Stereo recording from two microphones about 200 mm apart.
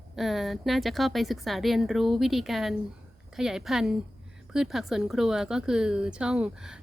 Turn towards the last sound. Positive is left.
turn(degrees=-5)  # may be behind; listen again after turning